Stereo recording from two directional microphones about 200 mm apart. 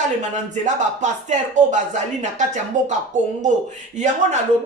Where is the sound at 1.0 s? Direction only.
35° right (ahead or behind).